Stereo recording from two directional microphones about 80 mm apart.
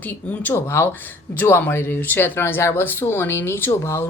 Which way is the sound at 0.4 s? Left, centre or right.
Left.